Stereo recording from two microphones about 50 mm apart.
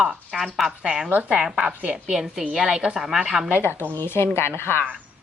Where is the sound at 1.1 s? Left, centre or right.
Right.